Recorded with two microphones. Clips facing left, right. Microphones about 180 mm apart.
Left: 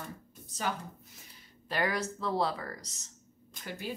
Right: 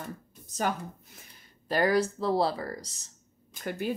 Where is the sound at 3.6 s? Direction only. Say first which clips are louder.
Right 8 dB; 55° right (ahead or behind).